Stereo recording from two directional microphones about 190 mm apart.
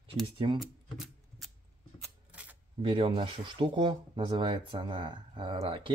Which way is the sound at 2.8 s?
30° right (ahead or behind).